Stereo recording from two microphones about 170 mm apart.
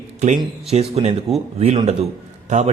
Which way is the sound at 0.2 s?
40° right (ahead or behind).